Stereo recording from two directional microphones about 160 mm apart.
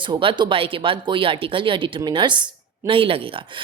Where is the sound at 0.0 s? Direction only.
30° right (ahead or behind).